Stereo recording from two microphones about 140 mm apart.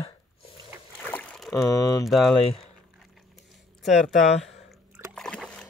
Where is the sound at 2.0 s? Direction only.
Centre (ahead or behind).